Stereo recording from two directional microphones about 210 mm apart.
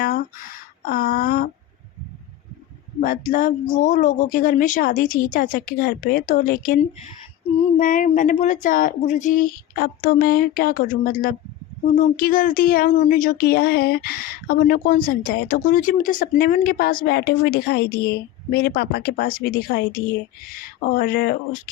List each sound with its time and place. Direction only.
0.0 s speech: 40° left (ahead or behind)
3.0 s speech: 40° left (ahead or behind)